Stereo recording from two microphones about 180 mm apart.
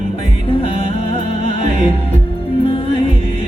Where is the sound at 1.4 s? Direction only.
30° left (ahead or behind).